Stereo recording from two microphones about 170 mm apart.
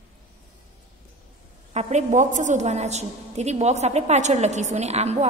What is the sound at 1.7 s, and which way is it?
A woman's voice, 45° right (ahead or behind).